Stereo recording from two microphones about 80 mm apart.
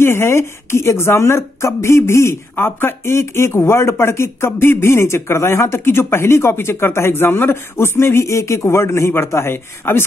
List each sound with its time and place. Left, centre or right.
0.0 s a woman's voice: left